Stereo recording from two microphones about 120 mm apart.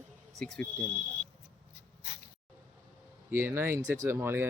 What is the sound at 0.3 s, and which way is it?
Speech, 5° left (ahead or behind).